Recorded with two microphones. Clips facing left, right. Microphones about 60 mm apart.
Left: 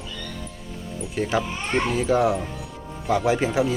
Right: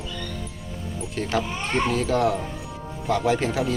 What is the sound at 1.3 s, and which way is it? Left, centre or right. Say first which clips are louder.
Speech: even; centre.